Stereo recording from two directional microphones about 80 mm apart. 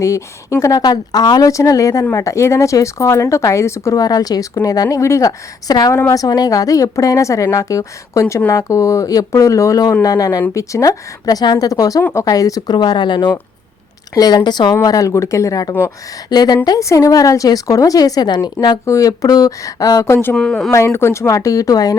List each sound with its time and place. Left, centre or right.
0.0 s a woman's voice: left
0.9 s a woman's voice: left
1.5 s a woman's voice: left
3.9 s a woman's voice: left
5.6 s a woman's voice: left
12.7 s speech: left
14.1 s a woman's voice: left
16.3 s a woman's voice: left
16.6 s a woman's voice: left
18.9 s a woman's voice: left
20.3 s speech: centre
20.7 s a woman's voice: left